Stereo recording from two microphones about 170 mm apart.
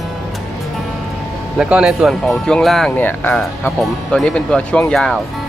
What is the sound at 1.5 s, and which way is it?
Speech, 5° right (ahead or behind).